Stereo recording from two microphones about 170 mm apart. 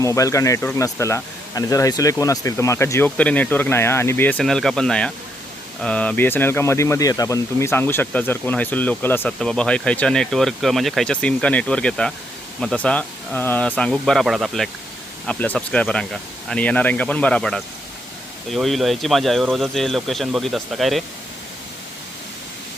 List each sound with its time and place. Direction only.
0.0 s a man's voice: 20° left (ahead or behind); by 21.0 s centre (ahead or behind)